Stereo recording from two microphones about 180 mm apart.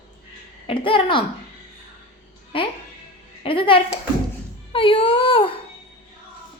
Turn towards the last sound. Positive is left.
turn(degrees=30)  # may be behind; listen again after turning